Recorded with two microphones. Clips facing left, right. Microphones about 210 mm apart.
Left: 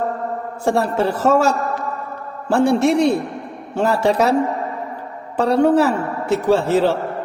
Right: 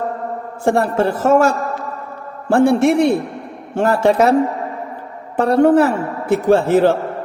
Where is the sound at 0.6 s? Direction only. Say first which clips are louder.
Right 2 dB; 55° right (ahead or behind).